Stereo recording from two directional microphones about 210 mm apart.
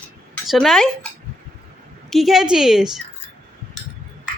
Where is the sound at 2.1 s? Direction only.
Centre (ahead or behind).